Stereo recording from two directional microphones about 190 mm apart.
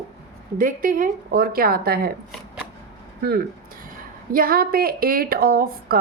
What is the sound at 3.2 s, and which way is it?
A woman's voice, 55° right (ahead or behind).